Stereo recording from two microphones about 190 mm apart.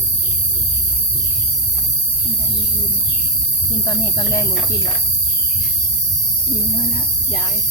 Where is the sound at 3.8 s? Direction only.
15° left (ahead or behind).